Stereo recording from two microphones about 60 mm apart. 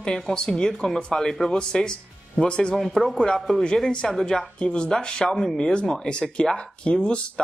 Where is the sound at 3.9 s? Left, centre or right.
Centre.